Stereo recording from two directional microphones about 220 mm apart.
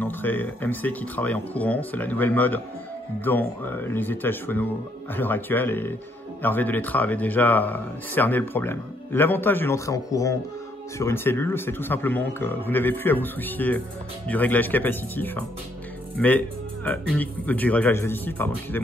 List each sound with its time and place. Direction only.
0.0 s speech: 10° left (ahead or behind)